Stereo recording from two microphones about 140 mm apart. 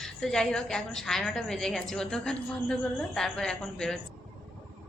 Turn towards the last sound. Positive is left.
turn(degrees=5)  # may be behind; listen again after turning